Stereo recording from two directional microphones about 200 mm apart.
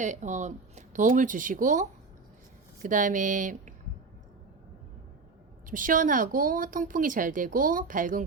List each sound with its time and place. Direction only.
0.0 s speech: 35° right (ahead or behind)
5.6 s a woman's voice: 40° right (ahead or behind)